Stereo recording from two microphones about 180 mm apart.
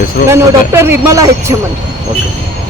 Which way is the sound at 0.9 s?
15° right (ahead or behind).